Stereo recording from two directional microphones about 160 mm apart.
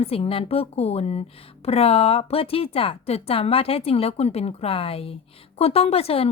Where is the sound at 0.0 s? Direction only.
35° left (ahead or behind).